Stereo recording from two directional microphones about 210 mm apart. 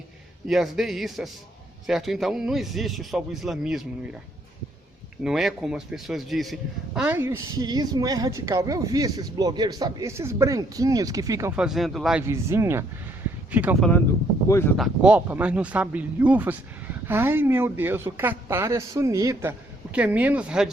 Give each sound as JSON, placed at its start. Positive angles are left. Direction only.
{"t": 0.4, "sound": "a man's voice", "side_deg": 0}
{"t": 5.2, "sound": "a man's voice", "side_deg": 0}
{"t": 12.2, "sound": "speech", "side_deg": -15}
{"t": 14.4, "sound": "speech", "side_deg": 15}
{"t": 14.8, "sound": "speech", "side_deg": -5}